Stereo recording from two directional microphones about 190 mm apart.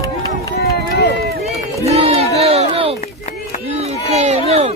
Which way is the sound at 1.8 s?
35° right (ahead or behind).